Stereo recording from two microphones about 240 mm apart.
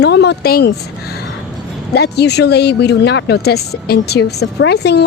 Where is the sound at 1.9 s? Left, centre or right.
Left.